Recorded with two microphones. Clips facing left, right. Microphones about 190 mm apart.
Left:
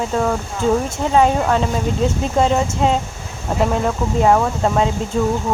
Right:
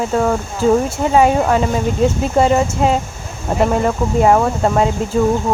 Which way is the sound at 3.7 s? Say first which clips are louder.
Right 3 dB; 5° right (ahead or behind).